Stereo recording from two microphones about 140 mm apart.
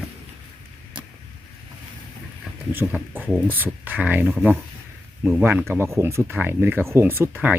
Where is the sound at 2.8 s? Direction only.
Centre (ahead or behind).